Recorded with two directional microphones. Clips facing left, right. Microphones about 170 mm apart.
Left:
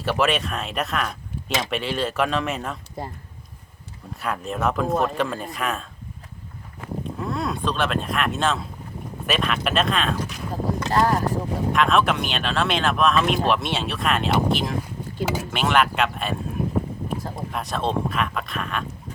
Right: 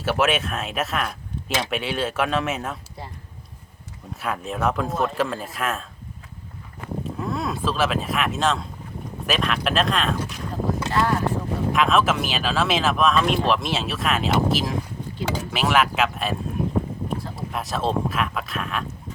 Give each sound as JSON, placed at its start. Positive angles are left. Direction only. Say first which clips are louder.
{"t": 0.0, "sound": "speech", "louder": "even", "side_deg": 0}
{"t": 3.0, "sound": "speech", "louder": "left 6 dB", "side_deg": 45}
{"t": 4.1, "sound": "speech", "louder": "even", "side_deg": 0}
{"t": 7.0, "sound": "speech", "louder": "even", "side_deg": 0}
{"t": 10.9, "sound": "speech", "louder": "left 2 dB", "side_deg": 40}
{"t": 11.7, "sound": "speech", "louder": "even", "side_deg": 0}
{"t": 17.5, "sound": "speech", "louder": "right 1 dB", "side_deg": 0}